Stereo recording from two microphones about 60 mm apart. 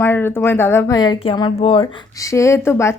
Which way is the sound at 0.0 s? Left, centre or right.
Left.